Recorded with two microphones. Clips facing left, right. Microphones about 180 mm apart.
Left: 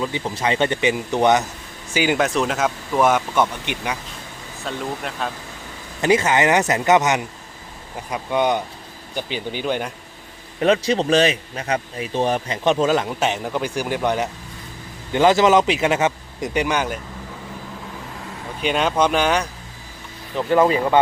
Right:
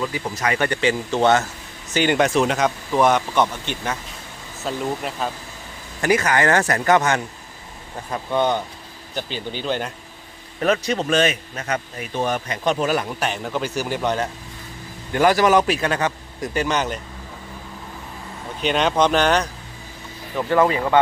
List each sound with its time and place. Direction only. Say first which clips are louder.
0.0 s a man's voice: left 1 dB; 25° left (ahead or behind); by 3.9 s 10° left (ahead or behind)
4.6 s speech: right 2 dB; centre (ahead or behind)
6.0 s a man's voice: left 2 dB; 25° left (ahead or behind)
10.6 s a man's voice: left 3 dB; 30° left (ahead or behind)
13.4 s a man's voice: left 1 dB; 10° left (ahead or behind)
18.6 s a man's voice: even; 5° left (ahead or behind); by 20.8 s 20° left (ahead or behind)